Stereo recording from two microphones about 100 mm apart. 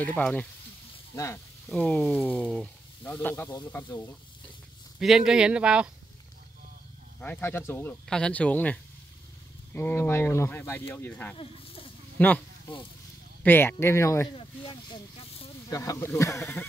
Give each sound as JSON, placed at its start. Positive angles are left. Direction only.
{"t": 0.2, "sound": "speech", "side_deg": 10}
{"t": 1.1, "sound": "speech", "side_deg": 30}
{"t": 1.7, "sound": "speech", "side_deg": 10}
{"t": 4.9, "sound": "speech", "side_deg": -5}
{"t": 7.2, "sound": "speech", "side_deg": 20}
{"t": 8.1, "sound": "speech", "side_deg": 10}
{"t": 9.8, "sound": "speech", "side_deg": 20}
{"t": 11.3, "sound": "snake", "side_deg": 65}
{"t": 12.2, "sound": "speech", "side_deg": 15}
{"t": 14.3, "sound": "speech", "side_deg": 60}
{"t": 15.7, "sound": "speech", "side_deg": 30}